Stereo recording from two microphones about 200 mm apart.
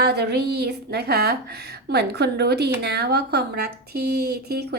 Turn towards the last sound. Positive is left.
turn(degrees=-55)  # may be behind; listen again after turning